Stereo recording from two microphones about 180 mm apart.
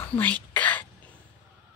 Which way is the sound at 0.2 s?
10° left (ahead or behind).